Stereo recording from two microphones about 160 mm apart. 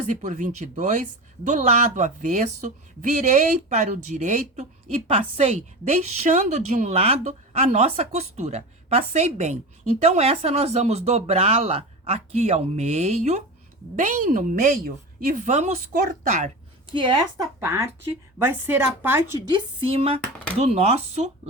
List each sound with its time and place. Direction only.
0.1 s a woman's voice: 45° right (ahead or behind)
16.9 s a woman's voice: 30° right (ahead or behind); by 19.2 s 10° right (ahead or behind)
19.5 s speech: 35° right (ahead or behind)